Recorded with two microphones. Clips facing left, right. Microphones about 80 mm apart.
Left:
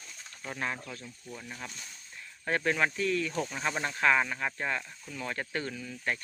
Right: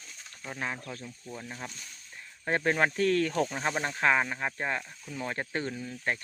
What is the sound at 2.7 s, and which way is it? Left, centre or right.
Speech, right.